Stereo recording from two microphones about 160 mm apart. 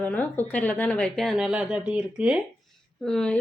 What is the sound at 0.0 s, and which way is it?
A woman's voice, 10° left (ahead or behind).